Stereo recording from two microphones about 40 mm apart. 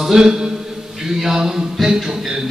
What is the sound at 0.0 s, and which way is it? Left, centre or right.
A man's voice, centre.